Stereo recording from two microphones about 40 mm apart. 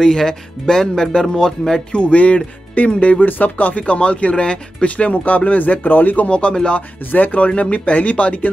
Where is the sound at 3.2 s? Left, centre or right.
Left.